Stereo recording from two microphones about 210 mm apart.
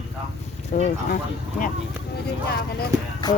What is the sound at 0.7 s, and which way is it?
Speech, 30° left (ahead or behind).